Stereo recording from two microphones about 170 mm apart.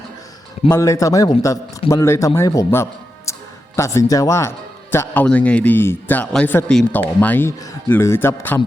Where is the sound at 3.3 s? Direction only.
20° left (ahead or behind).